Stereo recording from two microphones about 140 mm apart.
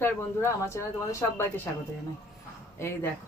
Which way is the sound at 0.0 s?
20° left (ahead or behind).